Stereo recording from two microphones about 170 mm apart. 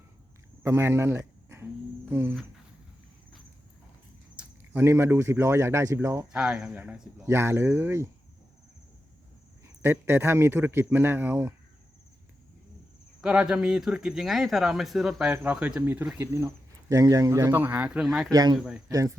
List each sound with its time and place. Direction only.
0.6 s cricket: 15° right (ahead or behind)
2.0 s music: 15° right (ahead or behind)
4.4 s speech: 10° right (ahead or behind)
6.3 s speech: 5° right (ahead or behind)
9.8 s speech: 15° right (ahead or behind)
13.2 s speech: 5° right (ahead or behind)
18.3 s speech: 25° right (ahead or behind)
18.5 s speech: centre (ahead or behind)
18.9 s speech: 20° right (ahead or behind)